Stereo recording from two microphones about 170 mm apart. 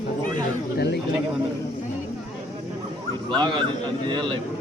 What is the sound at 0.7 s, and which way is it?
Speech, 75° left (ahead or behind).